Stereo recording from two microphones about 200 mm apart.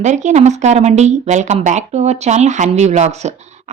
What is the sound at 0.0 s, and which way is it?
A woman's voice, 35° right (ahead or behind).